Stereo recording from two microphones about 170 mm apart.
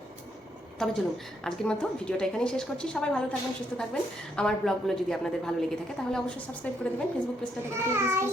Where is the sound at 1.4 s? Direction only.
5° left (ahead or behind).